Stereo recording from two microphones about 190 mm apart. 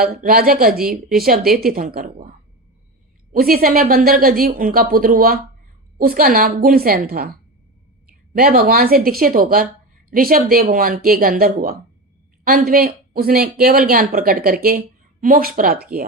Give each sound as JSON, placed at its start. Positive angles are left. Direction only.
{"t": 0.0, "sound": "speech", "side_deg": -50}
{"t": 3.3, "sound": "speech", "side_deg": -50}